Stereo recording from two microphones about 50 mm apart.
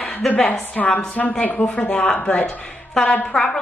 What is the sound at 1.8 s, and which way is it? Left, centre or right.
Speech, centre.